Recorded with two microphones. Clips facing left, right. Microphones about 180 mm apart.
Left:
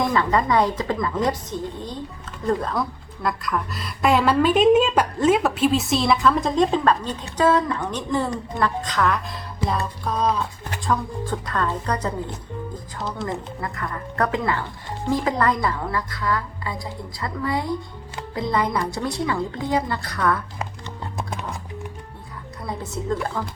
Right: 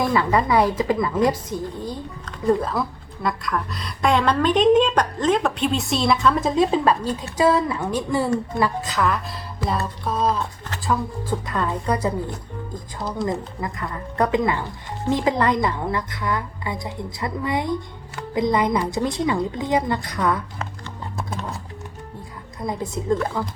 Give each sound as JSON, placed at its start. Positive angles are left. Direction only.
{"t": 0.0, "sound": "a woman's voice", "side_deg": -10}
{"t": 21.2, "sound": "music", "side_deg": 15}
{"t": 22.6, "sound": "speech", "side_deg": -15}